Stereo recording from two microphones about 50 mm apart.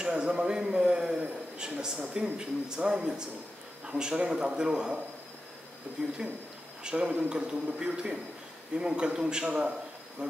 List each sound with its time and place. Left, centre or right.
0.0 s a man's voice: centre
6.0 s a man's voice: centre